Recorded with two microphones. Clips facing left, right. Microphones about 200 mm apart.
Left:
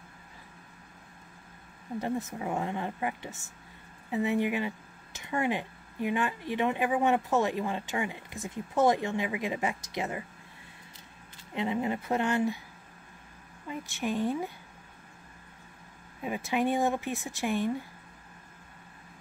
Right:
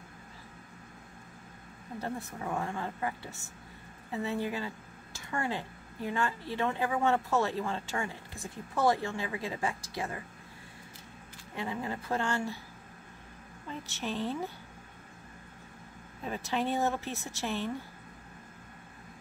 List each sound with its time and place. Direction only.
2.0 s a woman's voice: 15° left (ahead or behind)
11.5 s a woman's voice: 20° left (ahead or behind)
13.7 s speech: 15° left (ahead or behind)
16.2 s speech: 10° left (ahead or behind)